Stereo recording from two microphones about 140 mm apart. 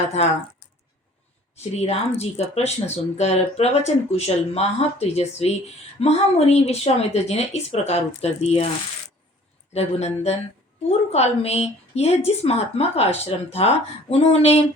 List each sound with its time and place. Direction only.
0.2 s speech: 50° left (ahead or behind)
1.7 s speech: 50° left (ahead or behind)
9.7 s speech: 50° left (ahead or behind)